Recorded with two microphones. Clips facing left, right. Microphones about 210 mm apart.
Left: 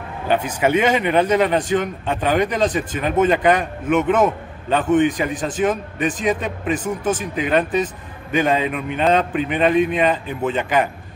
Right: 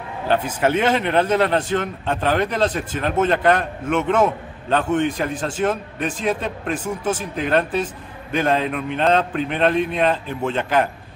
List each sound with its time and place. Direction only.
0.6 s a man's voice: 10° left (ahead or behind)